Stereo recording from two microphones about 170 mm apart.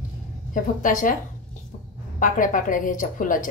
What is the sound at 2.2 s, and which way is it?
A woman's voice, 50° left (ahead or behind).